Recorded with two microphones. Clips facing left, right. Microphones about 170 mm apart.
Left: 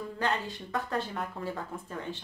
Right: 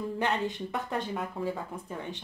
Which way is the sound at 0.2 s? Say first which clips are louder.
Right 1 dB; 20° right (ahead or behind).